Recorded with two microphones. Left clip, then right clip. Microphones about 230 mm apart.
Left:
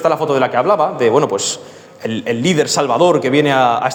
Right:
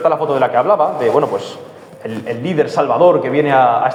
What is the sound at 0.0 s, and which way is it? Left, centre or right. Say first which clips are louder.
A man's voice: even; left.